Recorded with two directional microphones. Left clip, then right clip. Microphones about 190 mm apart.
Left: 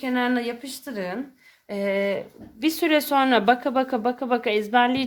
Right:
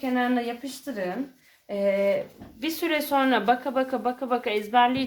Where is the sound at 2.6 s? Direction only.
60° left (ahead or behind).